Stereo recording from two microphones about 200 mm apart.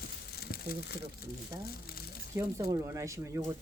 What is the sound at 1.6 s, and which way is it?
Speech, 50° left (ahead or behind).